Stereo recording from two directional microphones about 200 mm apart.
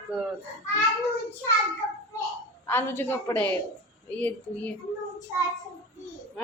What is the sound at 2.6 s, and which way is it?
A woman's voice, 10° left (ahead or behind).